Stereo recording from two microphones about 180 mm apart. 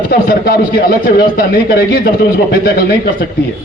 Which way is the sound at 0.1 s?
60° left (ahead or behind).